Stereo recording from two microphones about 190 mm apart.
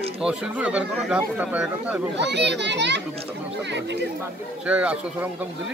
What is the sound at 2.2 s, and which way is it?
A child's voice, 65° right (ahead or behind).